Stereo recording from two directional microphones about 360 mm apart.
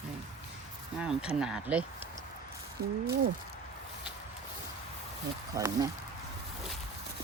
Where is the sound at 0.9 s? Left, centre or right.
Centre.